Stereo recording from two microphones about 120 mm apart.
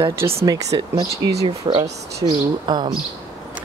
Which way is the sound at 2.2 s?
35° right (ahead or behind).